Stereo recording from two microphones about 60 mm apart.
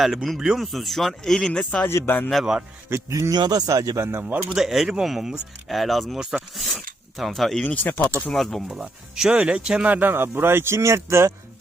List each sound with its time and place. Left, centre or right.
0.0 s speech: centre
1.8 s speech: left
2.0 s speech: left
2.4 s speech: centre
3.1 s speech: right
3.9 s speech: right
4.2 s speech: right
4.4 s speech: centre
7.6 s speech: left
8.3 s speech: centre
9.1 s speech: centre
9.9 s speech: right